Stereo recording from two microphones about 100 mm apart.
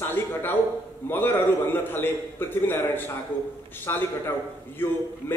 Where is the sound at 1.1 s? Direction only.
20° left (ahead or behind).